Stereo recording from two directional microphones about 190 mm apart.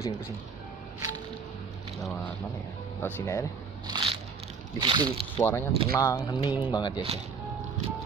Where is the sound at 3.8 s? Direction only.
25° right (ahead or behind).